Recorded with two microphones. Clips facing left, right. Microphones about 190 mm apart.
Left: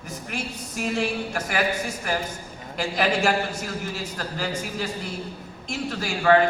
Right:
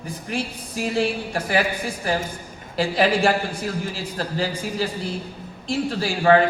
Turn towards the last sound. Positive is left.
turn(degrees=-30)  # may be behind; listen again after turning